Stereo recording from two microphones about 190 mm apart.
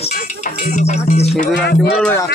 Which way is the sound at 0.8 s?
35° left (ahead or behind).